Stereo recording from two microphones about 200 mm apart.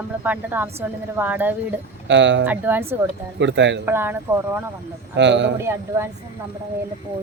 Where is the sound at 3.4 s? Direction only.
65° right (ahead or behind).